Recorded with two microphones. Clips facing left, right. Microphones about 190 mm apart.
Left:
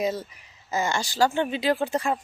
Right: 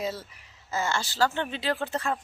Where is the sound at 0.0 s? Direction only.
15° left (ahead or behind).